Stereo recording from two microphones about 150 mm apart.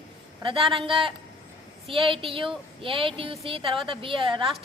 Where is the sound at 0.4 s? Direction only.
35° right (ahead or behind).